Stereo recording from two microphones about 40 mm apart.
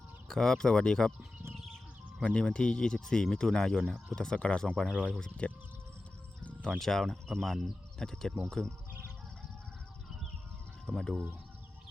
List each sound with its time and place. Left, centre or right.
0.3 s speech: centre
4.4 s speech: left
6.7 s speech: centre
7.9 s speech: centre
10.9 s speech: centre